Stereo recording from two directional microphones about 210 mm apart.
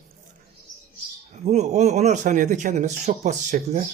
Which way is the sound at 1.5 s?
35° right (ahead or behind).